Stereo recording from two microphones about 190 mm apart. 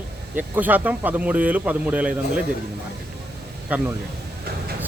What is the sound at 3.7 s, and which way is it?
Speech, 10° right (ahead or behind).